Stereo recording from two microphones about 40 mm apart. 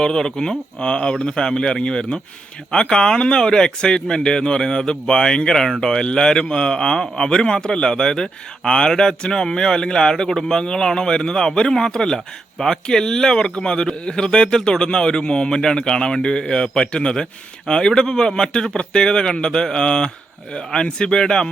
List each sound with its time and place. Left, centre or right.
0.0 s speech: centre